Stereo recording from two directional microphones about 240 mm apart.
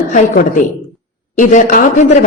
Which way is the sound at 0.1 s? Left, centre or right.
Left.